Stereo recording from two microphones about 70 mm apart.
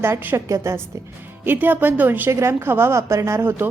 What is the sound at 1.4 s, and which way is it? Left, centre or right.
Speech, right.